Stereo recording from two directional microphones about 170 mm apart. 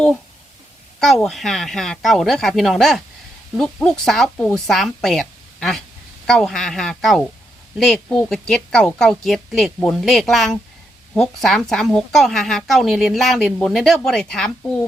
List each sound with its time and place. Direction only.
0.9 s a woman's voice: centre (ahead or behind)